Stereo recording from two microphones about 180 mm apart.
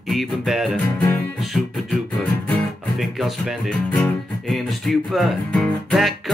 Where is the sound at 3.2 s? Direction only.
Centre (ahead or behind).